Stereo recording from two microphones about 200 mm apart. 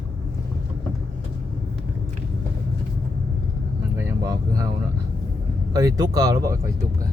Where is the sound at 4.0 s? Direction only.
15° right (ahead or behind).